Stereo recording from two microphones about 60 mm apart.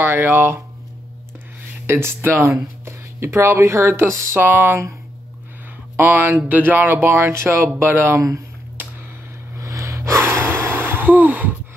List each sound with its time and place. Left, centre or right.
0.0 s speech: right
1.9 s speech: right
5.9 s speech: right
9.6 s gasp: right